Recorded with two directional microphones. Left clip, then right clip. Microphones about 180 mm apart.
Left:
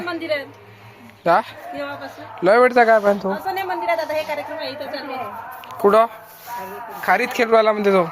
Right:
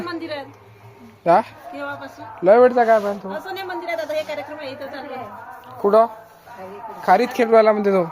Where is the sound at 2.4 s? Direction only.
5° left (ahead or behind).